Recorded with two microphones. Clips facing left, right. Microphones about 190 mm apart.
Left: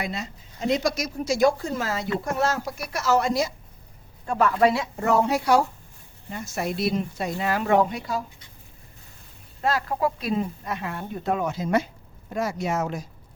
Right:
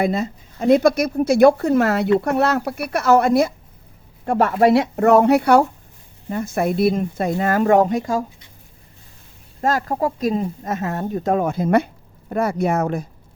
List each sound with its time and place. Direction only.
0.0 s speech: 50° right (ahead or behind)
4.6 s speech: 60° right (ahead or behind)
9.6 s speech: 45° right (ahead or behind)